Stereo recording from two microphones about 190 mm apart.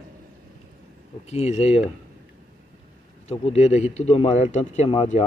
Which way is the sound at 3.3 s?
30° left (ahead or behind).